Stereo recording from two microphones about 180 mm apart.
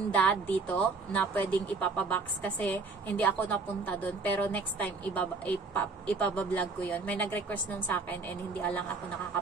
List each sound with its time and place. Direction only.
0.1 s a woman's voice: 10° left (ahead or behind)